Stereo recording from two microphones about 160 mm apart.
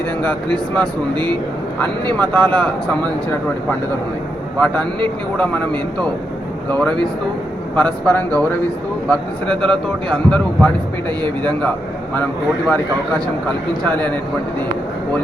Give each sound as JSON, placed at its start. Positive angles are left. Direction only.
{"t": 0.2, "sound": "speech", "side_deg": 5}
{"t": 4.6, "sound": "speech", "side_deg": 5}
{"t": 12.6, "sound": "speech", "side_deg": 5}